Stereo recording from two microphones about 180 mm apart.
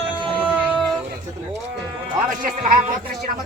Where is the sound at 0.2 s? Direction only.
30° right (ahead or behind).